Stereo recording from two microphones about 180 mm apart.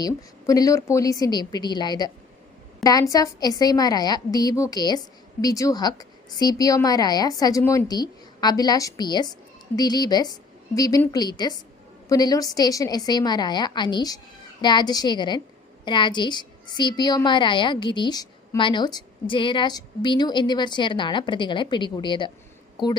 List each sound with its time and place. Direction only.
0.0 s a woman's voice: 20° left (ahead or behind)